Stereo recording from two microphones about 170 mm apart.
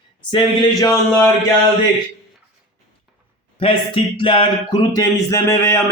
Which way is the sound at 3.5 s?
30° left (ahead or behind).